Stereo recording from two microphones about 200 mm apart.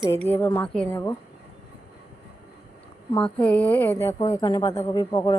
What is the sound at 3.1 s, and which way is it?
A woman's voice, 5° left (ahead or behind).